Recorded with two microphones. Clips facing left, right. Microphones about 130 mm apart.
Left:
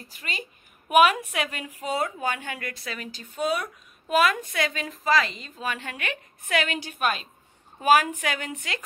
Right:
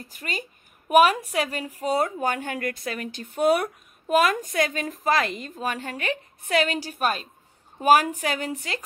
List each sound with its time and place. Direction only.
0.1 s a woman's voice: 45° right (ahead or behind)
4.1 s a woman's voice: 45° right (ahead or behind)